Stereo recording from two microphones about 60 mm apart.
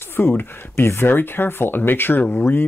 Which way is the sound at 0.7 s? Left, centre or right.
Left.